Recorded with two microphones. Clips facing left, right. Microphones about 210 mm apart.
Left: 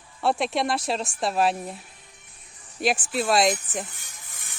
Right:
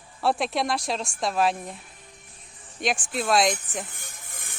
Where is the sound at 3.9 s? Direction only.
55° right (ahead or behind).